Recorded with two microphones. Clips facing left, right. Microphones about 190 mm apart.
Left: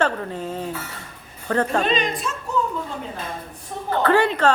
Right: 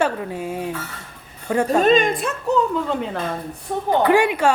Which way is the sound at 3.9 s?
10° right (ahead or behind).